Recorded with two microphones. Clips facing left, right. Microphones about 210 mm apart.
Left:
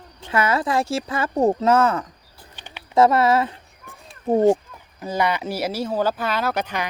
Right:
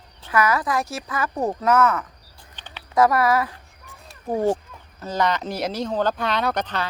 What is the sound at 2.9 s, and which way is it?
Speech, 25° left (ahead or behind).